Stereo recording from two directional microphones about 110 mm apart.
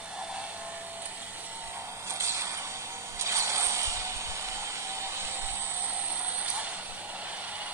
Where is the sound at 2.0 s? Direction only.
25° right (ahead or behind).